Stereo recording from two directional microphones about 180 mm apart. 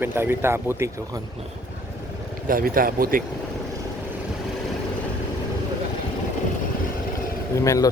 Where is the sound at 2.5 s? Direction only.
50° right (ahead or behind).